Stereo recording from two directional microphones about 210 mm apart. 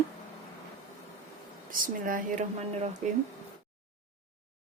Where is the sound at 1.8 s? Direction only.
40° right (ahead or behind).